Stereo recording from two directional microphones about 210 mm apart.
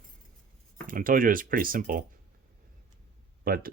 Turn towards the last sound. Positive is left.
turn(degrees=-45)  # may be behind; listen again after turning